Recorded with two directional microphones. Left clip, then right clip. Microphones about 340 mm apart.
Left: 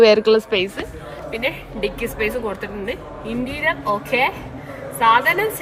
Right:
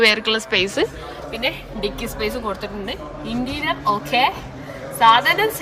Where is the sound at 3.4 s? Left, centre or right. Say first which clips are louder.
Left 1 dB; centre.